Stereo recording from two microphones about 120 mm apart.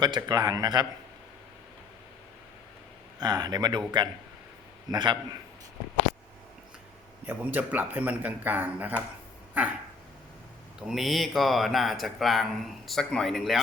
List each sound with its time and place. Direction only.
0.0 s speech: 35° right (ahead or behind)
3.2 s speech: 35° right (ahead or behind)
7.3 s speech: 15° right (ahead or behind)
10.8 s speech: 5° right (ahead or behind)